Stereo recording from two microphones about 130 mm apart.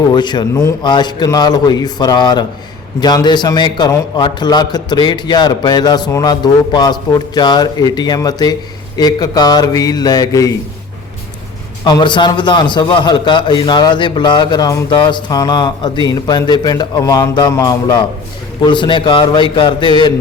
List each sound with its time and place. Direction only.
0.1 s a man's voice: 35° left (ahead or behind)
11.9 s a man's voice: 35° left (ahead or behind)
17.3 s a sound: 30° left (ahead or behind)
18.6 s a man's voice: 40° left (ahead or behind)